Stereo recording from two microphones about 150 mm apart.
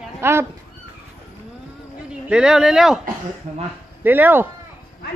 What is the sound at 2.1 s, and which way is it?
Speech, 5° right (ahead or behind).